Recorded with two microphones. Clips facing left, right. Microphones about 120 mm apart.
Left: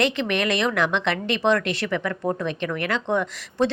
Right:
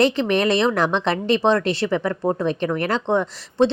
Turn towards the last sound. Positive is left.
turn(degrees=-30)  # may be behind; listen again after turning